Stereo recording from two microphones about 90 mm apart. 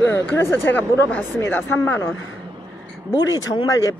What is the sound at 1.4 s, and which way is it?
Speech, 25° left (ahead or behind).